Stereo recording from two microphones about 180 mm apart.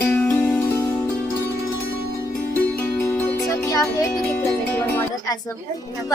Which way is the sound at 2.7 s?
10° left (ahead or behind).